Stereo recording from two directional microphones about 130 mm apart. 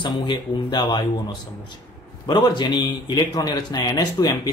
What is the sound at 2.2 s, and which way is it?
A man's voice, 35° left (ahead or behind).